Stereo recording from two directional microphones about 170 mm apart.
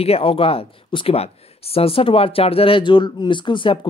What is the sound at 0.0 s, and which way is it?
Speech, 35° left (ahead or behind).